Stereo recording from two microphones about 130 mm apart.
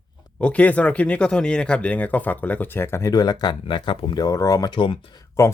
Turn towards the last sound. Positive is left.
turn(degrees=40)  # may be behind; listen again after turning